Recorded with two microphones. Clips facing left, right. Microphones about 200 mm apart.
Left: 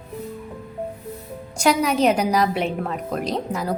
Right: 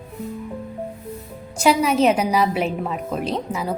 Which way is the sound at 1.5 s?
5° right (ahead or behind).